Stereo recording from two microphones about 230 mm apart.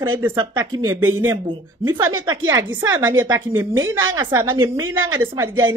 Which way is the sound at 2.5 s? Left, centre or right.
Centre.